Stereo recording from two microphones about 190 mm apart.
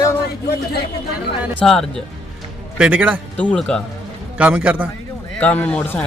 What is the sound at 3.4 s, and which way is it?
Speech, 5° left (ahead or behind).